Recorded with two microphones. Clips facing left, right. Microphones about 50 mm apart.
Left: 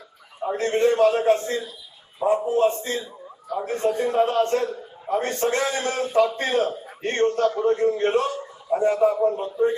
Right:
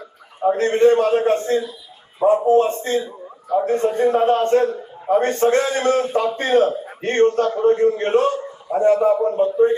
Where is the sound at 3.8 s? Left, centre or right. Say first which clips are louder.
Right 2 dB; right.